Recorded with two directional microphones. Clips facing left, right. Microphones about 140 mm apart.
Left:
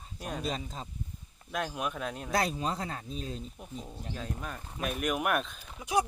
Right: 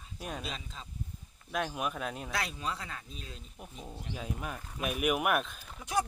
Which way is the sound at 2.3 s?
40° left (ahead or behind).